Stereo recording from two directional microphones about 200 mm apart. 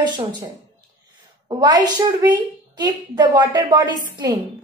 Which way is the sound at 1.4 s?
20° right (ahead or behind).